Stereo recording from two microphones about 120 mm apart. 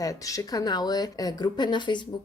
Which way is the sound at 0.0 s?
30° left (ahead or behind).